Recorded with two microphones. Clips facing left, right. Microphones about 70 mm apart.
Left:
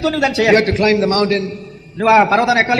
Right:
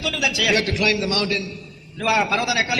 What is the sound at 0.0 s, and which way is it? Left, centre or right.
A man's voice, left.